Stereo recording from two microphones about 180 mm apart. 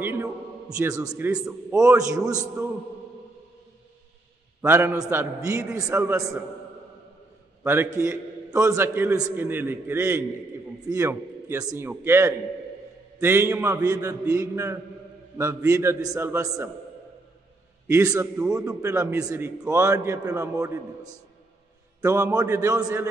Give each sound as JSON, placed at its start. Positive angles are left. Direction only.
{"t": 0.0, "sound": "a sound", "side_deg": -15}
{"t": 1.3, "sound": "a man's voice", "side_deg": -20}
{"t": 4.6, "sound": "a man's voice", "side_deg": -10}
{"t": 7.6, "sound": "a man's voice", "side_deg": -15}
{"t": 17.8, "sound": "a man's voice", "side_deg": -15}